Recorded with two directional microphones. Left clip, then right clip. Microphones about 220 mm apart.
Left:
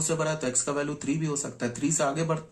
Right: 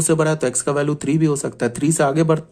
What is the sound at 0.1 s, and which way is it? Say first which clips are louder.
Speech: right 11 dB; 50° right (ahead or behind).